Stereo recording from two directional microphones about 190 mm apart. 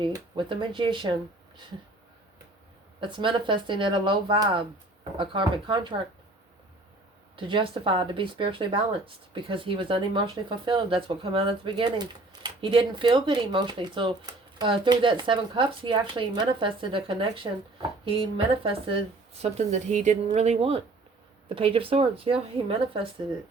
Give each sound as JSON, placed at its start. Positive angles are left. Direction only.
{"t": 0.0, "sound": "speech", "side_deg": -25}
{"t": 3.0, "sound": "speech", "side_deg": -25}
{"t": 7.3, "sound": "speech", "side_deg": -25}